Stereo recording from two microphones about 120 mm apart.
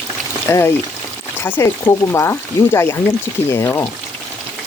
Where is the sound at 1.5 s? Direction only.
20° left (ahead or behind).